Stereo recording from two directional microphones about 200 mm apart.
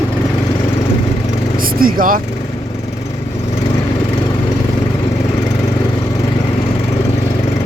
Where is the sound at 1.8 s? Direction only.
45° right (ahead or behind).